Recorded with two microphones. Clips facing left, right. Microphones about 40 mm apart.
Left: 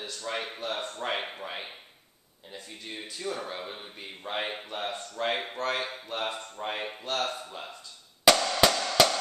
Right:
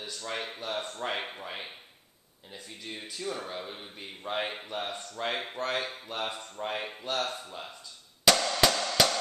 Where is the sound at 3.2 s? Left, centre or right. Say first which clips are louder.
Left 2 dB; centre.